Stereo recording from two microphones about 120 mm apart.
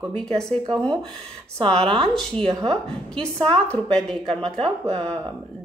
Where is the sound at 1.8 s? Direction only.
50° right (ahead or behind).